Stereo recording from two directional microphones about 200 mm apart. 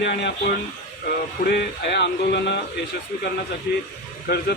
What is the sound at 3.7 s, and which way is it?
Speech, 55° left (ahead or behind).